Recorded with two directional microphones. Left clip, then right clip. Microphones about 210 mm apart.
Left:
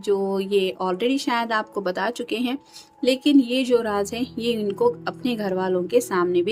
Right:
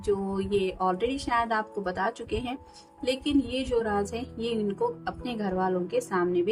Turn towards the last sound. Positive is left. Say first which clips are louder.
# left 5 dB
turn(degrees=40)  # may be behind; listen again after turning